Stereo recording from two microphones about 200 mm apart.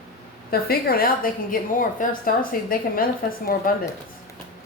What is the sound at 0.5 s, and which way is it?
A woman's voice, 50° left (ahead or behind).